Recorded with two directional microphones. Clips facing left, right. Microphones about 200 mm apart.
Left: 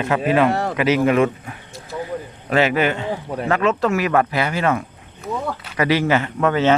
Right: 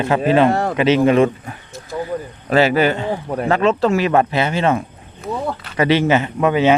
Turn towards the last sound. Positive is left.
turn(degrees=-15)  # may be behind; listen again after turning